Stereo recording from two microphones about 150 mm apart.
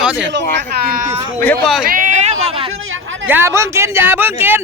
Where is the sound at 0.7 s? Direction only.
85° right.